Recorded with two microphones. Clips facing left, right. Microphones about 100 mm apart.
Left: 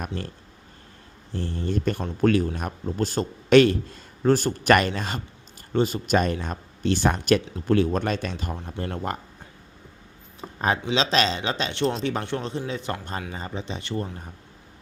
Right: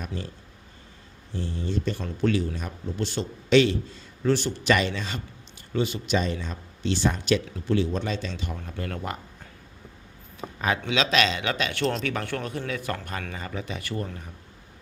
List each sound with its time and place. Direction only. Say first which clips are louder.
0.0 s speech: left 3 dB; 55° left (ahead or behind)
1.3 s a man's voice: left 2 dB; 55° left (ahead or behind)
8.5 s a man's voice: left 2 dB; 30° left (ahead or behind)
10.6 s a man's voice: left 2 dB; 35° left (ahead or behind)